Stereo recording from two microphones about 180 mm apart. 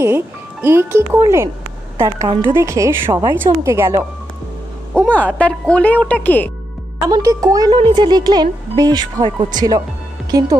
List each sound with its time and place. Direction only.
0.0 s speech: 15° right (ahead or behind)
2.5 s speech: 15° right (ahead or behind)
5.1 s speech: 10° left (ahead or behind)
7.1 s speech: 20° right (ahead or behind)